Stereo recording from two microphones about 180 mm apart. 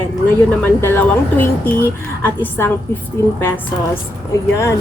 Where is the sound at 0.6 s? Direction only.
10° left (ahead or behind).